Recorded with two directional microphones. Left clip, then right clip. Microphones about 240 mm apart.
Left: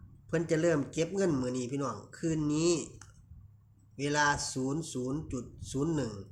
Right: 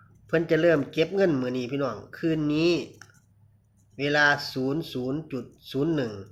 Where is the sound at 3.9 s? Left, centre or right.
Centre.